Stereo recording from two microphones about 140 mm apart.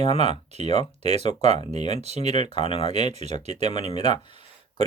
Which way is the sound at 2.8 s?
50° right (ahead or behind).